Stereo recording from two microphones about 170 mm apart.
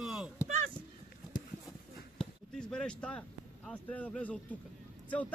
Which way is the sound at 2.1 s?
5° left (ahead or behind).